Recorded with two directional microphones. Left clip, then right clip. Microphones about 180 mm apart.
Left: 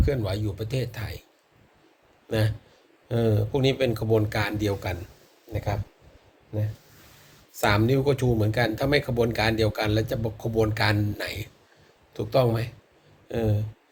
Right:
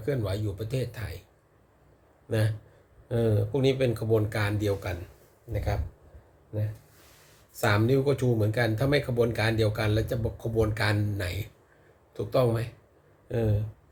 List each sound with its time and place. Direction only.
0.0 s speech: 15° right (ahead or behind)
2.3 s speech: 10° right (ahead or behind)
7.6 s speech: 10° right (ahead or behind)